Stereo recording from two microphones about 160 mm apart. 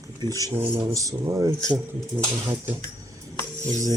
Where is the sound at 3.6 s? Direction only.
20° right (ahead or behind).